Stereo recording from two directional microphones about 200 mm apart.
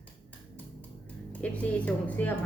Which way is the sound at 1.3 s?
5° left (ahead or behind).